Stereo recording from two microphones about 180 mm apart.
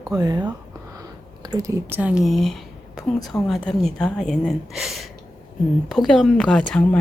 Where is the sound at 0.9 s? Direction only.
20° right (ahead or behind); by 3.3 s centre (ahead or behind).